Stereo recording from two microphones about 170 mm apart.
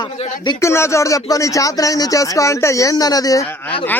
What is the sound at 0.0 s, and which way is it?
Speech, 25° left (ahead or behind).